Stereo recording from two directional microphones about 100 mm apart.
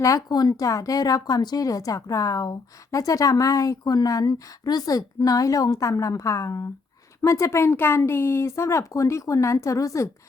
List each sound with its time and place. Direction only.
0.0 s a woman's voice: 35° left (ahead or behind)